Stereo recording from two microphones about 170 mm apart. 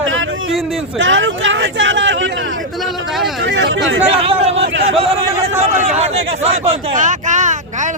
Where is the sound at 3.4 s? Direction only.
90° right.